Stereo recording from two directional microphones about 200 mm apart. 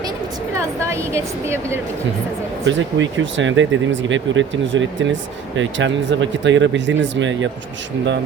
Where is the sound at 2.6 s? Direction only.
70° right (ahead or behind).